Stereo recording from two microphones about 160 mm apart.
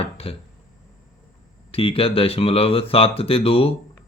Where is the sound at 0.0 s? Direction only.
35° left (ahead or behind).